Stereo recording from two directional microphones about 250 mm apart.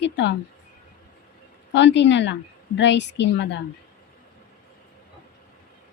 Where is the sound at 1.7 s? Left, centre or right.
Left.